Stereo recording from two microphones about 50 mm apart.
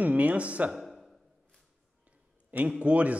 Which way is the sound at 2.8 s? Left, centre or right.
Right.